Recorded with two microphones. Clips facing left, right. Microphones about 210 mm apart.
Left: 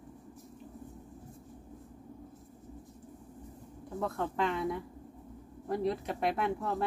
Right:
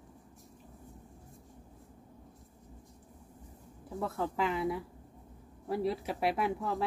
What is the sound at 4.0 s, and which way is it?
Speech, 5° right (ahead or behind).